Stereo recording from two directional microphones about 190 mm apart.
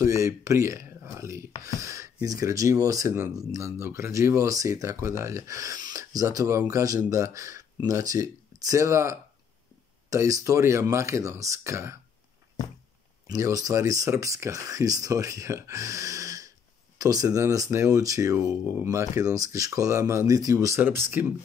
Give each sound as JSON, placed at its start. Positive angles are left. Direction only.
{"t": 0.0, "sound": "speech", "side_deg": -15}
{"t": 13.3, "sound": "speech", "side_deg": -20}